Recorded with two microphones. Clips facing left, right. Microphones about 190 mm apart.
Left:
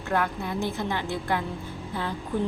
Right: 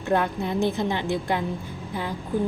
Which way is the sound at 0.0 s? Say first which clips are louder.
Right 4 dB; 20° right (ahead or behind).